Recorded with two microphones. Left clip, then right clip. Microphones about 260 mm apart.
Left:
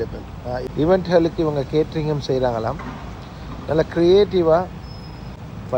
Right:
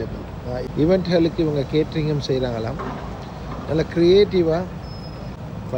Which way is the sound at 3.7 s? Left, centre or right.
Left.